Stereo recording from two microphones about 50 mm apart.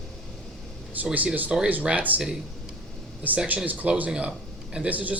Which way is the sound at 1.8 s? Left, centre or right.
Right.